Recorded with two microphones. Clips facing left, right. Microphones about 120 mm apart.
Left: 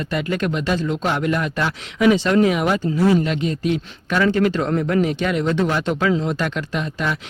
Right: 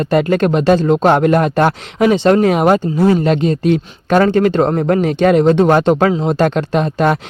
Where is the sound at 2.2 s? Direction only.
35° right (ahead or behind).